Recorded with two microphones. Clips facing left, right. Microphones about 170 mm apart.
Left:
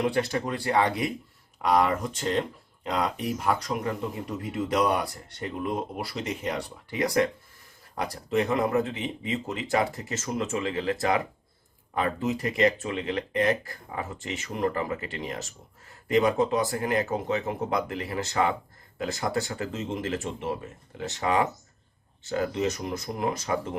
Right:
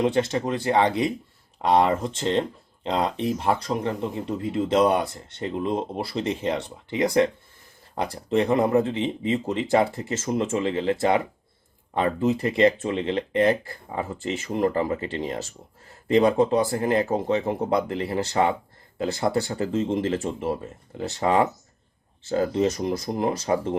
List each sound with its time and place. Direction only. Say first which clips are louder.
0.0 s speech: right 4 dB; 25° right (ahead or behind)